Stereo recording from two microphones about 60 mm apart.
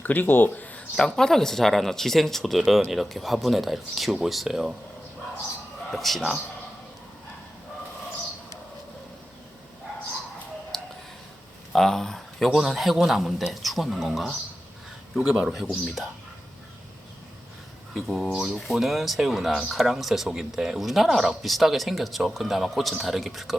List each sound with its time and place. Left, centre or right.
0.0 s speech: left
0.9 s speech: centre
5.9 s speech: centre
10.7 s a sound: centre
11.7 s speech: centre
15.4 s speech: centre
17.9 s speech: centre